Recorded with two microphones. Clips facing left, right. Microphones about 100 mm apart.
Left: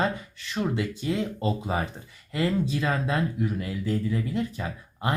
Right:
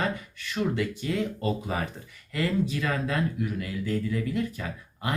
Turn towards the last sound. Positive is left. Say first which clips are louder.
# left 3 dB
turn(degrees=25)  # may be behind; listen again after turning